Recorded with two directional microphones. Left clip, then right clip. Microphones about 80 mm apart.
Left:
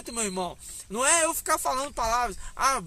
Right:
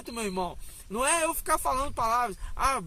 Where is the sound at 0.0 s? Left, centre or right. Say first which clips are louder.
Left 1 dB; left.